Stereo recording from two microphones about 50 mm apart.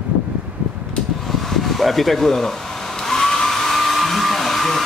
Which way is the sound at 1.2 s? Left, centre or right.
Centre.